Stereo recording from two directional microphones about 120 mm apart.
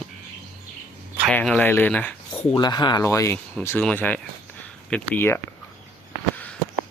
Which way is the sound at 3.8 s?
10° left (ahead or behind).